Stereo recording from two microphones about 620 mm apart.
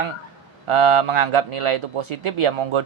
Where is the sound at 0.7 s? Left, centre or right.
Right.